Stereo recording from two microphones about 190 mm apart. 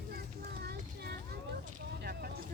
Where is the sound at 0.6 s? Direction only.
55° right (ahead or behind).